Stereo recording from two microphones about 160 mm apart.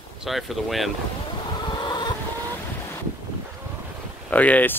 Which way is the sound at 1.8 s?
25° left (ahead or behind).